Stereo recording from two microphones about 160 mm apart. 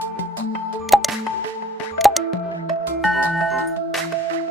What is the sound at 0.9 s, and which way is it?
Music, centre (ahead or behind).